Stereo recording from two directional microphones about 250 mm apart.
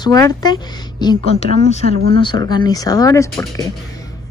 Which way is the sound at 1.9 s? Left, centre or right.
Right.